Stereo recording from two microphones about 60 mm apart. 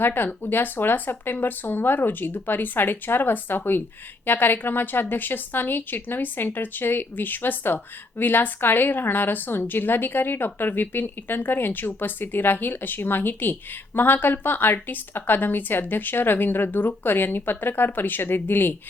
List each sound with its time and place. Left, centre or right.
0.0 s a woman's voice: left